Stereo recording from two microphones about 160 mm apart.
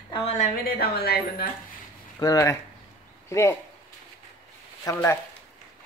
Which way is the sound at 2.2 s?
20° left (ahead or behind).